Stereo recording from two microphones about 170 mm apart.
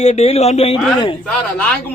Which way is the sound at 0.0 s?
40° left (ahead or behind).